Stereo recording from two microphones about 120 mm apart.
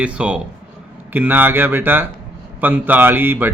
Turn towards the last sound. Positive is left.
turn(degrees=-15)  # may be behind; listen again after turning